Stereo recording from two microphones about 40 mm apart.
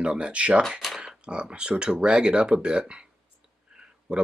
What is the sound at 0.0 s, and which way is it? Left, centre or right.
Speech, right.